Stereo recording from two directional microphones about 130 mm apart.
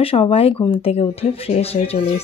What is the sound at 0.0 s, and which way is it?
Speech, 45° left (ahead or behind).